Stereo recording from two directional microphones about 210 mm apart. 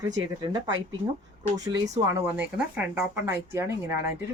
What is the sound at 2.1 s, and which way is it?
Speech, 10° right (ahead or behind).